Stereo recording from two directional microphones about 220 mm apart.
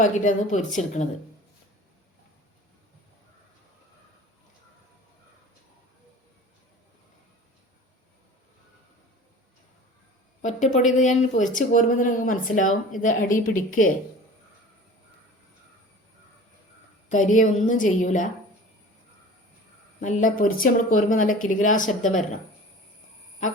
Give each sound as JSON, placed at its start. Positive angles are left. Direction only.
{"t": 0.0, "sound": "speech", "side_deg": 35}
{"t": 10.9, "sound": "speech", "side_deg": 35}
{"t": 17.1, "sound": "speech", "side_deg": 35}
{"t": 20.0, "sound": "speech", "side_deg": 35}